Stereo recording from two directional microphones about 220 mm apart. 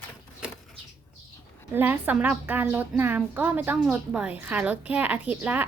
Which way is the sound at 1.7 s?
10° right (ahead or behind).